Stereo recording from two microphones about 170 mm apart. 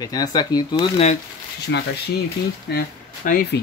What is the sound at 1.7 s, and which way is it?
Speech, 90° left.